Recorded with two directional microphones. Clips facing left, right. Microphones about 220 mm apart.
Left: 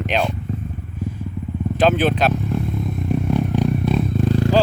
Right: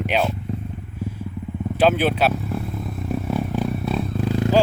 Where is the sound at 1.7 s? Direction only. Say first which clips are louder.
Left 1 dB; 10° right (ahead or behind).